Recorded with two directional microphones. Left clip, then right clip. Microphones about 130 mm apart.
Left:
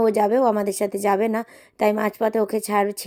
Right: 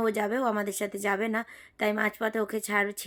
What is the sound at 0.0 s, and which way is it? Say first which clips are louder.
A woman's voice: left 10 dB; 30° left (ahead or behind).